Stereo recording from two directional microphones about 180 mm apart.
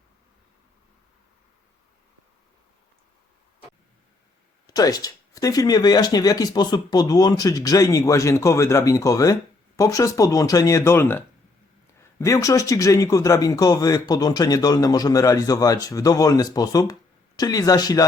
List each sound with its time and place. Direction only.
4.6 s speech: 20° left (ahead or behind)